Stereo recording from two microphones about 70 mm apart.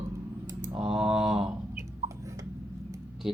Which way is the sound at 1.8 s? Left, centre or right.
Right.